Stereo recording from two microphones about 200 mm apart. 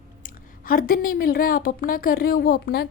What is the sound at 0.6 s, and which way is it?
A woman's voice, 45° left (ahead or behind).